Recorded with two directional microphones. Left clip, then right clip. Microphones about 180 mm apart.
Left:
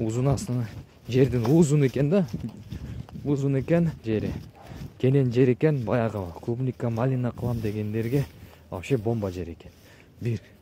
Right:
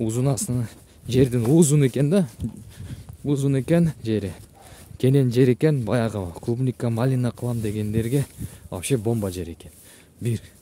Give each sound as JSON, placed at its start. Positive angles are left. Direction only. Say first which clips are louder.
{"t": 0.0, "sound": "speech", "louder": "right 2 dB", "side_deg": -55}
{"t": 3.3, "sound": "speech", "louder": "right 2 dB", "side_deg": -55}